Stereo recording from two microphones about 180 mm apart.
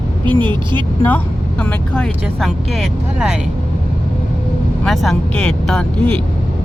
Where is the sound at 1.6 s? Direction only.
5° left (ahead or behind).